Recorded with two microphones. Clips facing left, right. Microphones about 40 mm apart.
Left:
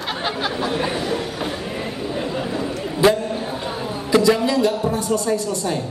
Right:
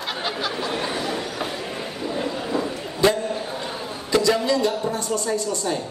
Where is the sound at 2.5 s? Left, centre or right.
Centre.